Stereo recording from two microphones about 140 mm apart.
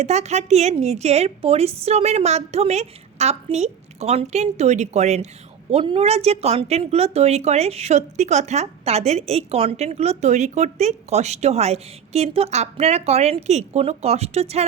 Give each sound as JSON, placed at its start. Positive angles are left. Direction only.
{"t": 0.0, "sound": "a woman's voice", "side_deg": -55}
{"t": 5.7, "sound": "a woman's voice", "side_deg": -40}